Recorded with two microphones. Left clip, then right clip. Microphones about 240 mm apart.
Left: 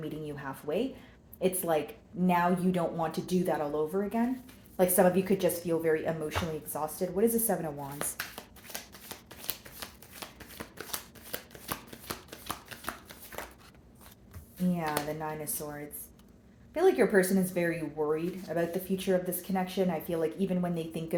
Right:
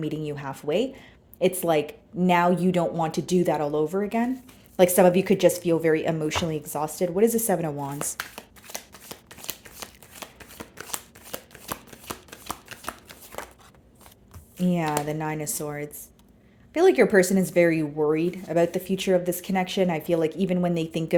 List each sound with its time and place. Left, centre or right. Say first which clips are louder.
0.0 s speech: right 8 dB; right
7.9 s shuffling cards: right 5 dB; right
14.7 s speech: right 6 dB; right